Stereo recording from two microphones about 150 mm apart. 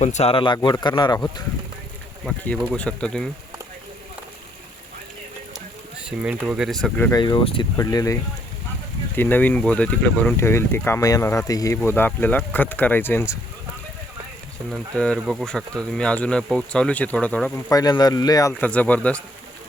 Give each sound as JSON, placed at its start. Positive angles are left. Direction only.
{"t": 0.0, "sound": "speech", "side_deg": 50}
{"t": 2.7, "sound": "speech", "side_deg": 5}
{"t": 6.1, "sound": "speech", "side_deg": -5}
{"t": 7.1, "sound": "speech", "side_deg": 30}
{"t": 7.8, "sound": "speech", "side_deg": 20}
{"t": 14.7, "sound": "speech", "side_deg": 5}
{"t": 17.7, "sound": "speech", "side_deg": 25}
{"t": 18.6, "sound": "speech", "side_deg": 10}